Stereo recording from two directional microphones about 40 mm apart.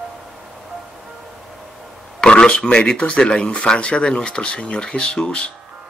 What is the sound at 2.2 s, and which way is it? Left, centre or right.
Speech, left.